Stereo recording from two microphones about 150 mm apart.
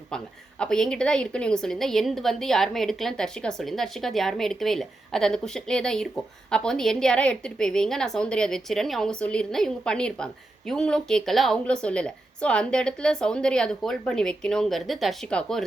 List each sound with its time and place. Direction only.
0.1 s a woman's voice: 5° left (ahead or behind)